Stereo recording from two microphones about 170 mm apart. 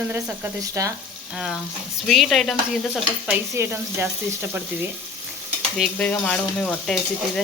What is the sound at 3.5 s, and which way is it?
Frying, 15° right (ahead or behind).